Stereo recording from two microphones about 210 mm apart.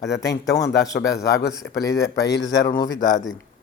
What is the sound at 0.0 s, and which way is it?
Speech, 15° left (ahead or behind).